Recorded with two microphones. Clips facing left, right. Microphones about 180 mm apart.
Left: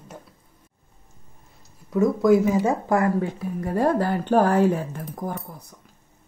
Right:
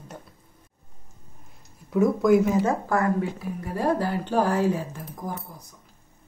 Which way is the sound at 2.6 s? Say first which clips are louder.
Left 3 dB; 20° left (ahead or behind).